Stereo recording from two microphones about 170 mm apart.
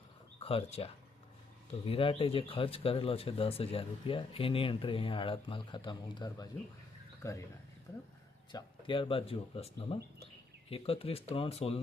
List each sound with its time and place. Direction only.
0.4 s speech: 35° left (ahead or behind); by 7.4 s 20° left (ahead or behind)
8.5 s speech: 30° left (ahead or behind)